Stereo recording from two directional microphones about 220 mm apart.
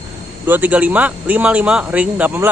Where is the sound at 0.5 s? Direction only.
5° right (ahead or behind).